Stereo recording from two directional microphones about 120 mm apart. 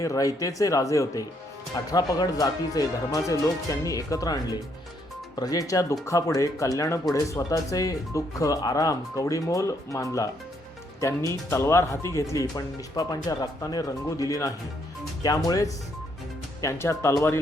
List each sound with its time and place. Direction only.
0.0 s speech: 30° left (ahead or behind)